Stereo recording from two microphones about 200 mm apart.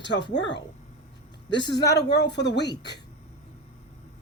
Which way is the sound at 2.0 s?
60° left (ahead or behind).